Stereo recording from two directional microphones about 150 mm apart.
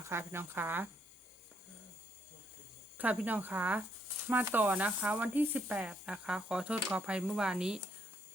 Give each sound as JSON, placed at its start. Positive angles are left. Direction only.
{"t": 0.0, "sound": "speech", "side_deg": -15}
{"t": 3.0, "sound": "speech", "side_deg": -10}